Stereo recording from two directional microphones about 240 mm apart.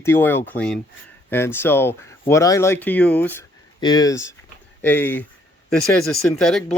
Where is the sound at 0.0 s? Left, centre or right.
Centre.